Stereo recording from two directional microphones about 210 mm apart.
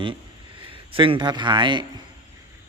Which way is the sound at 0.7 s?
25° right (ahead or behind).